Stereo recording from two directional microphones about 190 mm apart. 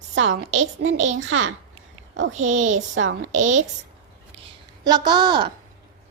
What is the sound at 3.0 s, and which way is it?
Speech, 90° right.